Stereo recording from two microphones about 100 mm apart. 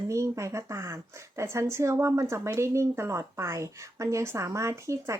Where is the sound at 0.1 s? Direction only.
30° right (ahead or behind).